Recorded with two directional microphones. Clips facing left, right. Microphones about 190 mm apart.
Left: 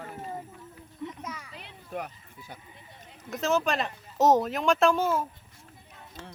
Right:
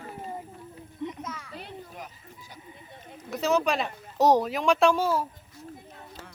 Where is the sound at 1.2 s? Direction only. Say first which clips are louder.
Right 2 dB; 10° left (ahead or behind).